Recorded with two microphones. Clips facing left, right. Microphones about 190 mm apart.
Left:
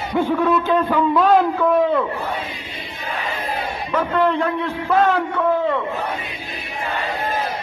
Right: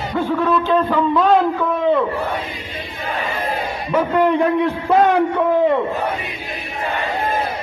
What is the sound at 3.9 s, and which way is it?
Speech, 15° right (ahead or behind).